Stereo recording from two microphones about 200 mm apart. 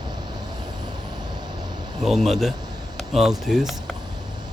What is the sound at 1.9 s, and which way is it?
A man's voice, centre (ahead or behind).